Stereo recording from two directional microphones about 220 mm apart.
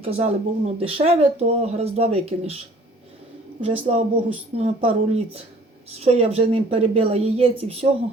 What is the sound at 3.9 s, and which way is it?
Speech, 30° right (ahead or behind).